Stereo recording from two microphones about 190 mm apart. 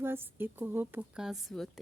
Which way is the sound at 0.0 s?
10° right (ahead or behind).